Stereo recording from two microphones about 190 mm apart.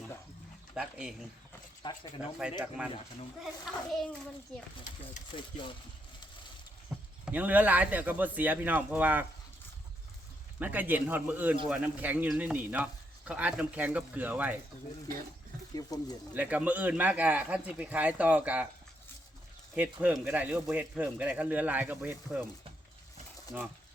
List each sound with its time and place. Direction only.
0.7 s speech: 5° right (ahead or behind)
1.8 s speech: 25° left (ahead or behind)
2.4 s speech: 5° right (ahead or behind)
5.3 s speech: 25° left (ahead or behind)
6.9 s a sound: centre (ahead or behind)
7.3 s speech: 10° right (ahead or behind)
10.6 s speech: 10° right (ahead or behind)
15.7 s speech: 20° left (ahead or behind)
16.3 s speech: 10° right (ahead or behind)
19.7 s speech: 10° right (ahead or behind)